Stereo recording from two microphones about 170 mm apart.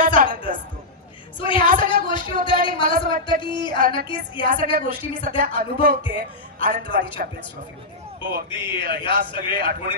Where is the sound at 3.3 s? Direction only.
25° left (ahead or behind).